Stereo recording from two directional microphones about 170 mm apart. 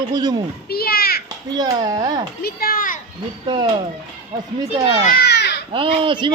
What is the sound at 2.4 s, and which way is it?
Children playing, 60° left (ahead or behind).